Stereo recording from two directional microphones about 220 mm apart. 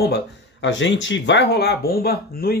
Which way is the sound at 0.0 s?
50° left (ahead or behind).